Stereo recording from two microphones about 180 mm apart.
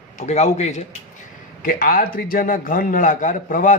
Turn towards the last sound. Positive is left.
turn(degrees=45)  # may be behind; listen again after turning